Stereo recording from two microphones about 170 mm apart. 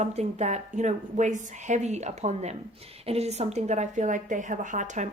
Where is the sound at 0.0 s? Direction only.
40° right (ahead or behind).